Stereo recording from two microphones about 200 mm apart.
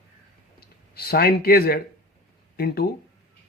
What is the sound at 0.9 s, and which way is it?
A man's voice, 50° left (ahead or behind).